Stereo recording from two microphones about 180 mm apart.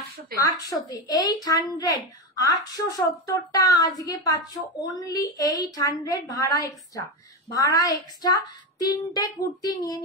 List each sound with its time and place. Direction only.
0.4 s a woman's voice: 20° left (ahead or behind)